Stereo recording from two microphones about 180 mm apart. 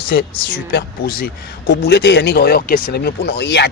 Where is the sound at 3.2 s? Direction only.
70° left (ahead or behind).